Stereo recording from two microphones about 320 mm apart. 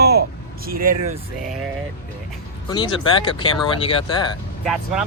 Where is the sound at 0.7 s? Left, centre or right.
Right.